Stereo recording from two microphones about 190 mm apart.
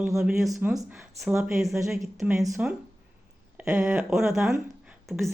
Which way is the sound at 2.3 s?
15° right (ahead or behind).